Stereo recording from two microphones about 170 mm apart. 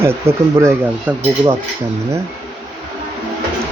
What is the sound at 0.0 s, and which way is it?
Speech, 15° right (ahead or behind).